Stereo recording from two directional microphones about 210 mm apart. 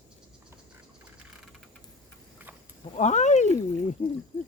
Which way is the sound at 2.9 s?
35° left (ahead or behind).